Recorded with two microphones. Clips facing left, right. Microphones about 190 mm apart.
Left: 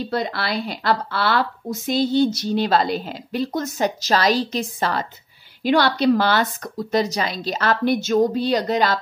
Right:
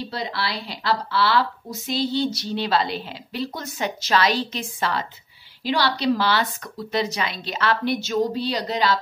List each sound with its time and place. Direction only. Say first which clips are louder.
0.1 s a woman's voice: left 7 dB; 50° left (ahead or behind)
5.6 s a woman's voice: left 5 dB; 50° left (ahead or behind)